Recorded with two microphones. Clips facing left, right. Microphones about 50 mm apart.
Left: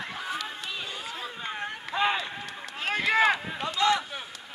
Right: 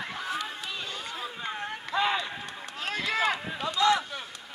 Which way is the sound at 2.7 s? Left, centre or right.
Left.